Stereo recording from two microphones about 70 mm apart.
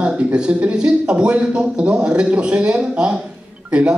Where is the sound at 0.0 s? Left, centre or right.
Centre.